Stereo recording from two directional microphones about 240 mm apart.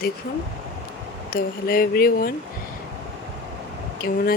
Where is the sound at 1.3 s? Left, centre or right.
Left.